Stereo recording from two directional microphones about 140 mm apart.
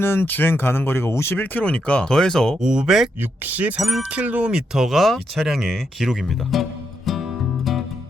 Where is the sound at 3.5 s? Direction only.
10° right (ahead or behind).